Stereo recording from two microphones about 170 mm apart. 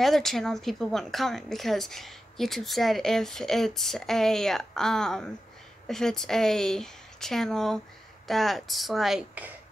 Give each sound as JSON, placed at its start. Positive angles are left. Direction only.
{"t": 0.0, "sound": "speech", "side_deg": 0}